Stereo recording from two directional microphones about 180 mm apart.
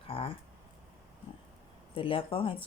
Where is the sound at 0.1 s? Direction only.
30° left (ahead or behind).